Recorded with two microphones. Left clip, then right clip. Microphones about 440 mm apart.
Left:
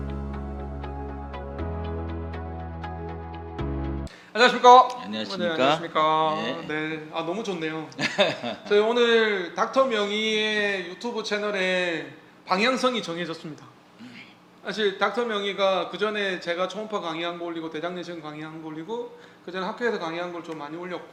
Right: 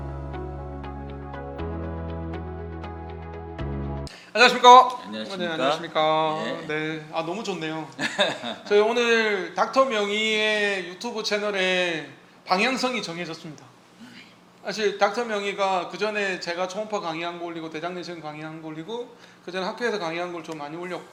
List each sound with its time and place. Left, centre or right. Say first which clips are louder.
4.4 s speech: right 2 dB; centre
4.9 s a man's voice: right 1 dB; left
5.8 s a man's voice: even; centre
6.3 s speech: even; left
6.7 s a man's voice: right 1 dB; centre
7.9 s speech: left 1 dB; left
8.7 s a man's voice: even; centre
14.7 s a man's voice: right 2 dB; centre